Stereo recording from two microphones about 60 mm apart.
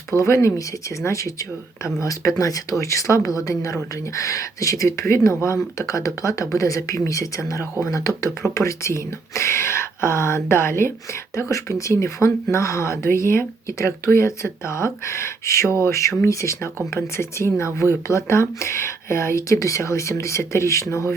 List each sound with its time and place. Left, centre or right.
0.1 s speech: left
7.9 s speech: left
8.5 s speech: left
11.3 s speech: left